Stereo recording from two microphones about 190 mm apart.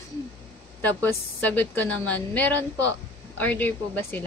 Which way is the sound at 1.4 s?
10° left (ahead or behind).